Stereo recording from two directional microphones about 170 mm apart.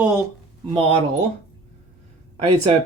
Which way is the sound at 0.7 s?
40° right (ahead or behind).